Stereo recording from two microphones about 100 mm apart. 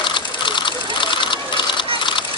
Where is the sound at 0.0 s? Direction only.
55° left (ahead or behind).